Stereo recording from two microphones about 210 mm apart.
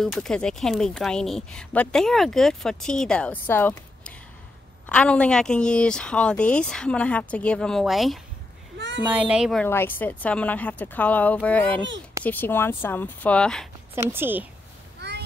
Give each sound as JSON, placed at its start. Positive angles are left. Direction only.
{"t": 0.0, "sound": "speech", "side_deg": 5}
{"t": 8.7, "sound": "a sound", "side_deg": -55}
{"t": 9.0, "sound": "speech", "side_deg": -5}
{"t": 9.7, "sound": "speech", "side_deg": 10}
{"t": 13.9, "sound": "speech", "side_deg": -10}
{"t": 15.0, "sound": "a sound", "side_deg": -55}